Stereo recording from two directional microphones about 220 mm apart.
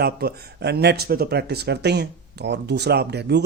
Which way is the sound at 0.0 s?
45° right (ahead or behind).